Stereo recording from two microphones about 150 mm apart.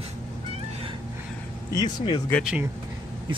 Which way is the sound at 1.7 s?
25° left (ahead or behind).